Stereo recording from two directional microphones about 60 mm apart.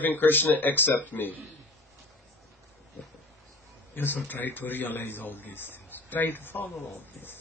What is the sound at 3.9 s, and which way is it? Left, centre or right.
Speech, left.